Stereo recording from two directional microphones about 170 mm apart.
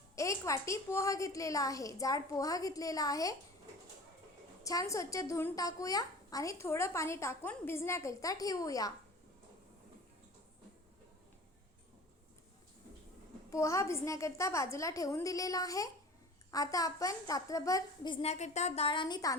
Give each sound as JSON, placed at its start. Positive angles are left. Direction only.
{"t": 0.2, "sound": "a child's voice", "side_deg": 20}
{"t": 4.6, "sound": "a child's voice", "side_deg": 20}
{"t": 13.5, "sound": "a woman's voice", "side_deg": 20}
{"t": 18.9, "sound": "a child's voice", "side_deg": 25}